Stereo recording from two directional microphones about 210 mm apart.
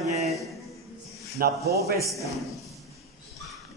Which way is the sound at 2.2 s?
Centre (ahead or behind).